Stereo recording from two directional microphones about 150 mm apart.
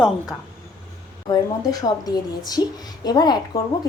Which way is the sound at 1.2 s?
25° left (ahead or behind).